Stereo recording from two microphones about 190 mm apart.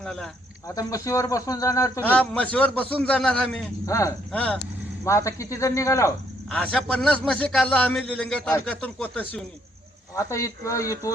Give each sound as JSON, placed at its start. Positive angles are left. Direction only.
{"t": 0.0, "sound": "speech", "side_deg": 5}
{"t": 0.7, "sound": "a man's voice", "side_deg": 15}
{"t": 3.8, "sound": "a man's voice", "side_deg": 15}
{"t": 4.3, "sound": "a man's voice", "side_deg": 5}
{"t": 4.6, "sound": "speech", "side_deg": 15}
{"t": 6.6, "sound": "a man's voice", "side_deg": 5}